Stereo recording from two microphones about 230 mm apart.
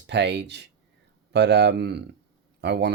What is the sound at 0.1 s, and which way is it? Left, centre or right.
Speech, right.